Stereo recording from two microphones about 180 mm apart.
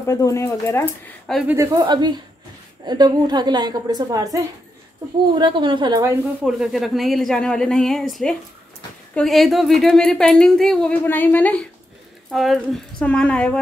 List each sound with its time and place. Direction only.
0.0 s speech: 15° left (ahead or behind)
1.5 s a woman's voice: 20° right (ahead or behind)
6.4 s a woman's voice: centre (ahead or behind)